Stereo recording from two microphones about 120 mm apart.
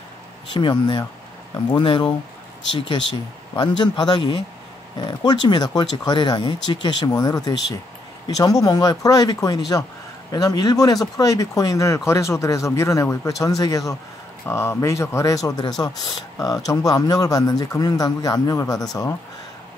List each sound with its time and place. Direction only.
0.5 s speech: 40° left (ahead or behind)